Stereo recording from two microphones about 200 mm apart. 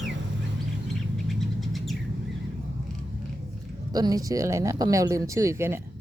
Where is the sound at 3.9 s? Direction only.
20° right (ahead or behind).